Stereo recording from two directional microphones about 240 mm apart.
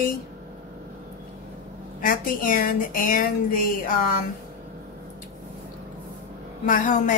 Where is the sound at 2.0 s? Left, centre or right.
Left.